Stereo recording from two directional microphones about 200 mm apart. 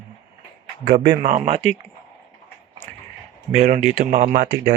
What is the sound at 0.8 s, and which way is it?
Speech, 50° right (ahead or behind).